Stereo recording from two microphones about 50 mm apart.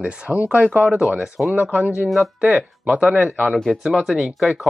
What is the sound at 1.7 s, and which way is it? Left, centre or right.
Speech, right.